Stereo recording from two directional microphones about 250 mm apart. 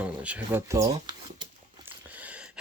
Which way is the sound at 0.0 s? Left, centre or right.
Centre.